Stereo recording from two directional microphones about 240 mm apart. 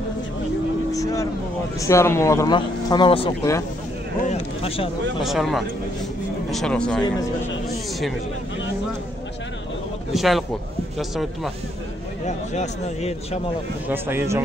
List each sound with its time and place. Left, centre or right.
0.9 s vehicle: centre
1.8 s speech: centre
5.2 s speech: centre
10.1 s speech: centre
12.3 s speech: left
13.8 s speech: centre